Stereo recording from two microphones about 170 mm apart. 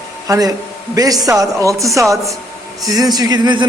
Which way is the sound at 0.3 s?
20° right (ahead or behind).